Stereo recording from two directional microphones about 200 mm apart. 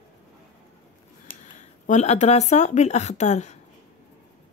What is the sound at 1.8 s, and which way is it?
Speech, 35° left (ahead or behind).